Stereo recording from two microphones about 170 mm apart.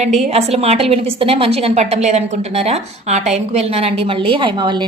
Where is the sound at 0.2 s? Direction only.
40° right (ahead or behind).